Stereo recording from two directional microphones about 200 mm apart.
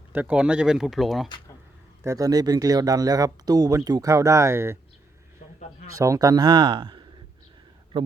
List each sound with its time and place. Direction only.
0.1 s speech: 10° right (ahead or behind)
2.0 s speech: 20° right (ahead or behind)
6.0 s a man's voice: 15° right (ahead or behind)